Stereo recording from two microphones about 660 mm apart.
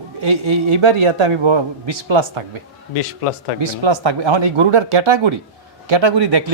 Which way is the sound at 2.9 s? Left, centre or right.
Left.